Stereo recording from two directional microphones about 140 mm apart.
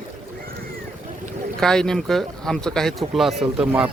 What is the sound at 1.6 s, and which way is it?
Speech, 5° left (ahead or behind).